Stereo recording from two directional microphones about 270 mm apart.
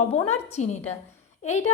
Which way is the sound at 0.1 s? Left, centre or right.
Left.